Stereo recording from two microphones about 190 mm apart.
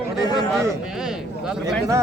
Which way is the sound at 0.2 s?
20° left (ahead or behind).